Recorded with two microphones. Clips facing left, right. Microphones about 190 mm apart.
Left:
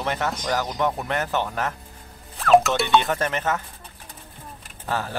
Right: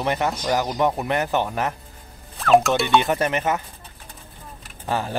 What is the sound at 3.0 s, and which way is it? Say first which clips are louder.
Speech: right 3 dB; 15° right (ahead or behind).